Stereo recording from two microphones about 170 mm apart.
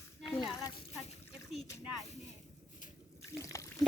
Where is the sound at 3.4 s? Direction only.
20° left (ahead or behind).